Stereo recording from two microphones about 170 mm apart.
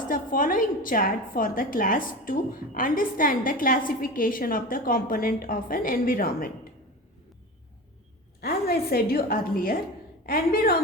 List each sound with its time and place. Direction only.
0.1 s a woman's voice: 55° left (ahead or behind)
8.4 s a woman's voice: 65° left (ahead or behind)